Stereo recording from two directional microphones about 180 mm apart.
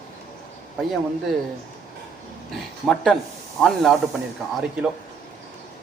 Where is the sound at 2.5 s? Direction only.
Centre (ahead or behind).